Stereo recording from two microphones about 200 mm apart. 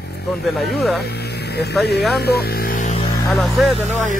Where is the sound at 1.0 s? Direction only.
55° left (ahead or behind).